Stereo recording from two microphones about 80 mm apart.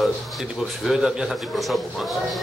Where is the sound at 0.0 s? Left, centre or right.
Centre.